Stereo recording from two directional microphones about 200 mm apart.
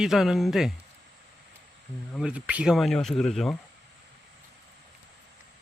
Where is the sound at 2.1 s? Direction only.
5° right (ahead or behind).